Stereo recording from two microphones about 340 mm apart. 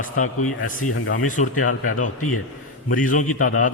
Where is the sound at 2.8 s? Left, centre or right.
Left.